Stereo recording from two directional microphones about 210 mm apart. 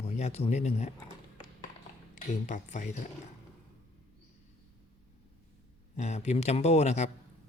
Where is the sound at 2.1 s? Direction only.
35° left (ahead or behind).